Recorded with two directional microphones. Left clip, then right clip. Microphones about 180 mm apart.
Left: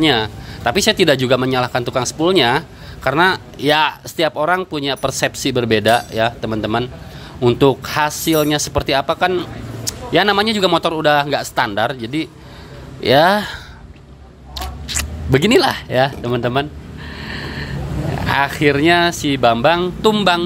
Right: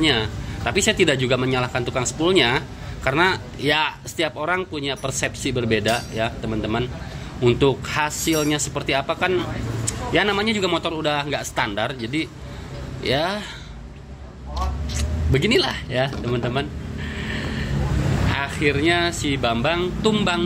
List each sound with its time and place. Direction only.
0.0 s speech: 25° left (ahead or behind)
13.0 s speech: 35° left (ahead or behind)
15.3 s speech: 30° left (ahead or behind)
17.1 s a sound: 20° left (ahead or behind)
18.3 s speech: 30° left (ahead or behind)